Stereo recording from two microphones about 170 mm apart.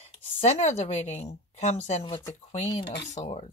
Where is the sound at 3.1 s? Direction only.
40° left (ahead or behind).